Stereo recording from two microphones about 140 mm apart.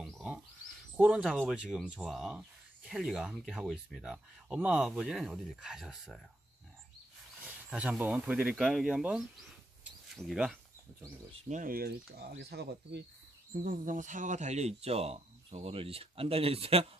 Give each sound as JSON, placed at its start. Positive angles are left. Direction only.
{"t": 0.0, "sound": "a sound", "side_deg": 5}
{"t": 0.9, "sound": "speech", "side_deg": -10}
{"t": 7.4, "sound": "speech", "side_deg": -10}
{"t": 11.3, "sound": "speech", "side_deg": -60}
{"t": 13.5, "sound": "speech", "side_deg": -75}